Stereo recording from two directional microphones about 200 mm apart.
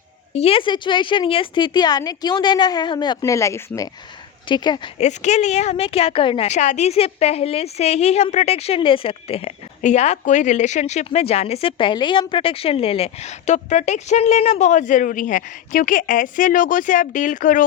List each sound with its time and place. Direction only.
0.3 s a woman's voice: 30° left (ahead or behind)
4.9 s a woman's voice: 35° left (ahead or behind)